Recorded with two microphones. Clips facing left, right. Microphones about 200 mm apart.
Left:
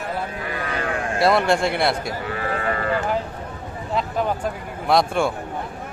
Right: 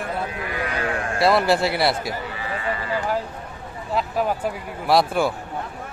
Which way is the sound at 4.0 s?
5° right (ahead or behind).